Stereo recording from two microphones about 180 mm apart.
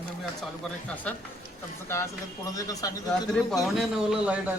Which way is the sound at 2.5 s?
20° left (ahead or behind).